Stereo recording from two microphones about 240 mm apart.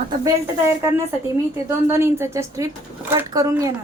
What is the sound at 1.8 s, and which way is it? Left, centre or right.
Speech, centre.